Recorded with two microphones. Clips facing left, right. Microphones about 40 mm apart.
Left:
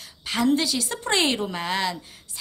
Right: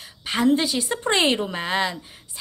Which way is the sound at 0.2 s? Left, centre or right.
Centre.